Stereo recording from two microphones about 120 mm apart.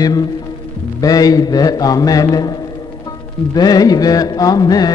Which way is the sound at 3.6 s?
35° left (ahead or behind).